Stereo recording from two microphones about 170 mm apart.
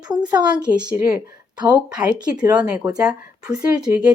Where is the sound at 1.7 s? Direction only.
10° right (ahead or behind).